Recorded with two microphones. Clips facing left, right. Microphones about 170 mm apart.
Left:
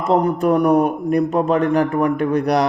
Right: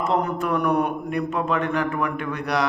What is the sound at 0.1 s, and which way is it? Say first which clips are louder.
A man's voice: left 11 dB; 35° left (ahead or behind).